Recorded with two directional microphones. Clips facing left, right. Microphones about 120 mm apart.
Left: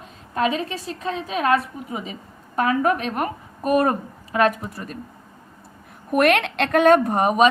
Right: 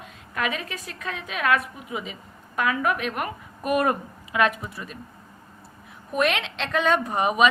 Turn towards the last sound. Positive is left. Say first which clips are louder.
# left 4 dB
turn(degrees=40)  # may be behind; listen again after turning